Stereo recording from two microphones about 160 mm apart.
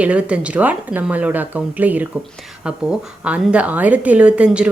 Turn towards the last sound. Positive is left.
turn(degrees=-5)  # may be behind; listen again after turning